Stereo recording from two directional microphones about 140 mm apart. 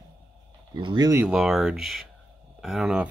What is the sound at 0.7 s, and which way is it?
Speech, 30° right (ahead or behind).